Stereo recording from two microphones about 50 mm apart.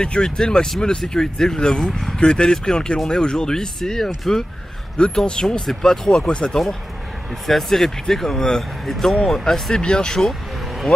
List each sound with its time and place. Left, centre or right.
0.0 s speech: centre
4.9 s speech: centre
7.4 s speech: centre